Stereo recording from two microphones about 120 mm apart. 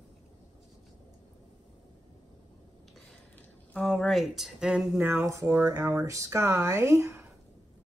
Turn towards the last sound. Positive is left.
turn(degrees=-20)  # may be behind; listen again after turning